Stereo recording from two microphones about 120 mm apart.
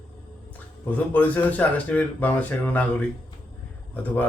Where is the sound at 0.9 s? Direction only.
15° left (ahead or behind).